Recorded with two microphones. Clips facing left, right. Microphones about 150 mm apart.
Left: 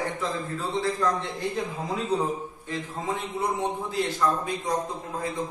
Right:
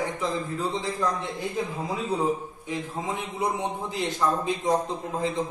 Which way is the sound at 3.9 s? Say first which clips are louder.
Right 1 dB; 20° right (ahead or behind).